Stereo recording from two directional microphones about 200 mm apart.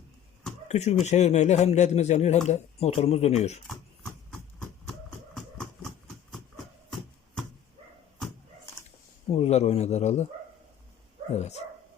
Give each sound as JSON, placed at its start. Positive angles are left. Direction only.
{"t": 0.7, "sound": "speech", "side_deg": 35}
{"t": 4.9, "sound": "a sound", "side_deg": 0}
{"t": 9.3, "sound": "speech", "side_deg": 30}
{"t": 11.3, "sound": "speech", "side_deg": 35}